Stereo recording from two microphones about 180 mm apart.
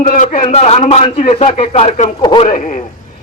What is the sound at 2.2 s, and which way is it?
Speech, 30° left (ahead or behind).